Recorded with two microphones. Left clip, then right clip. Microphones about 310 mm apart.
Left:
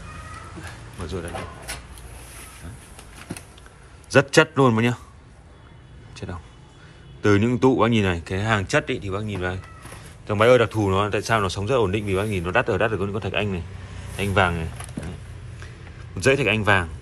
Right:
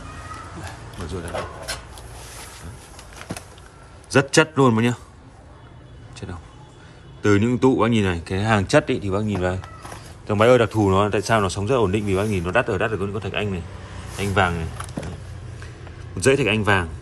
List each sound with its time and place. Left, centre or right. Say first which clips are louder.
4.1 s speech: left 1 dB; centre
6.1 s speech: left 1 dB; centre
16.2 s speech: right 1 dB; centre